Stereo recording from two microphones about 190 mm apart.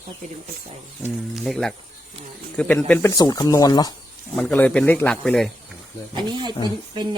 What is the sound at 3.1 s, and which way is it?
Speech, 20° left (ahead or behind).